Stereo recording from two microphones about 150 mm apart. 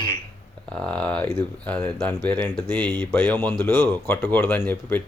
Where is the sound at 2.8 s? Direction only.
30° right (ahead or behind).